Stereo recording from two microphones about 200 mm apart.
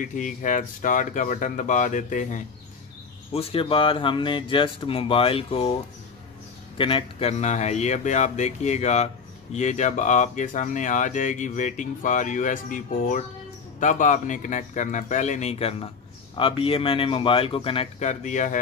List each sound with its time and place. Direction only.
0.0 s speech: 40° left (ahead or behind)
3.3 s speech: 30° left (ahead or behind)
6.8 s speech: 25° left (ahead or behind)